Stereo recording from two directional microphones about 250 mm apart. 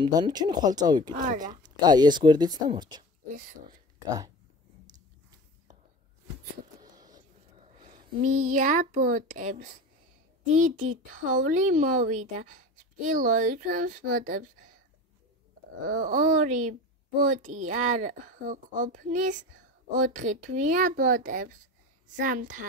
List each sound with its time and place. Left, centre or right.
0.0 s speech: centre
1.1 s speech: right
1.6 s speech: centre
3.3 s speech: right
6.8 s a sound: centre
8.2 s speech: right
15.8 s speech: right